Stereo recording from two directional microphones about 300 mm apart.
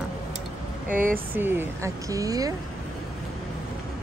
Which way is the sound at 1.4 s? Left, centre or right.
Centre.